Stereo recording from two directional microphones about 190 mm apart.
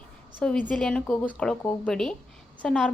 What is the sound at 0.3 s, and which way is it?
A woman's voice, 5° left (ahead or behind).